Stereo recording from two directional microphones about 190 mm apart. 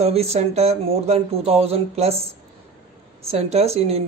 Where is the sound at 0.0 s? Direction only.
35° right (ahead or behind).